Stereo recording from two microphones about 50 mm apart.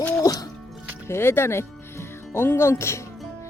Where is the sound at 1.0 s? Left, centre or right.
Left.